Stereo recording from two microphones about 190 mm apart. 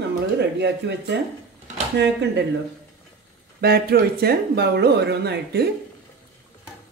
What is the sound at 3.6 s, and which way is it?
Speech, 55° right (ahead or behind).